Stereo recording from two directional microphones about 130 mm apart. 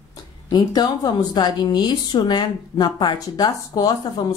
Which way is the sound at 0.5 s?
35° left (ahead or behind).